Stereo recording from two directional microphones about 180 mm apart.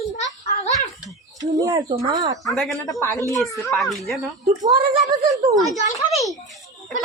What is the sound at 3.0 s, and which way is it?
Speech, 15° left (ahead or behind).